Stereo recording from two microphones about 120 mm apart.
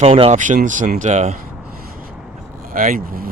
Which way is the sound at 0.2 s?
80° right.